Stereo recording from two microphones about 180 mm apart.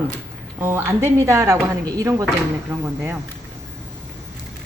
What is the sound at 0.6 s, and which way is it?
A woman's voice, 15° right (ahead or behind).